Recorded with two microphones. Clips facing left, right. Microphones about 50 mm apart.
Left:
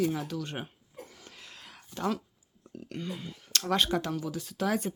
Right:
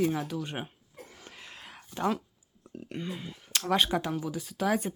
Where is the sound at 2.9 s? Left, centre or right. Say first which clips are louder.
Right 1 dB; centre.